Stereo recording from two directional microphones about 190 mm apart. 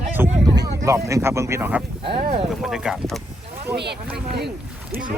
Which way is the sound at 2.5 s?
Centre (ahead or behind).